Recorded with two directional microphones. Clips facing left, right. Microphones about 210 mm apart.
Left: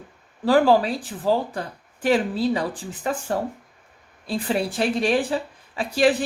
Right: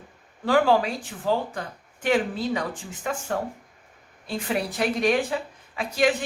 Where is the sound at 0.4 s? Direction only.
35° left (ahead or behind).